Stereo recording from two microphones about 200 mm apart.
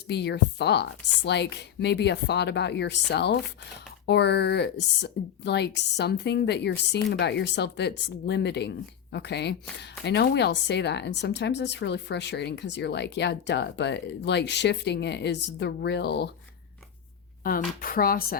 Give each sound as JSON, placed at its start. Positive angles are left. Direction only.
{"t": 0.1, "sound": "speech", "side_deg": 55}
{"t": 17.4, "sound": "speech", "side_deg": 45}